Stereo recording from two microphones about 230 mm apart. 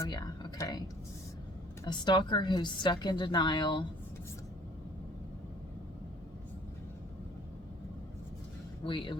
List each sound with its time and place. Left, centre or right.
0.0 s speech: centre
1.8 s a woman's voice: centre
8.9 s a woman's voice: left